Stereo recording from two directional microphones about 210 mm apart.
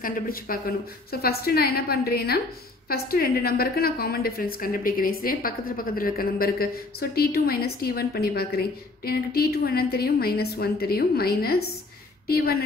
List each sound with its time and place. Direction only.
0.0 s a woman's voice: 40° left (ahead or behind)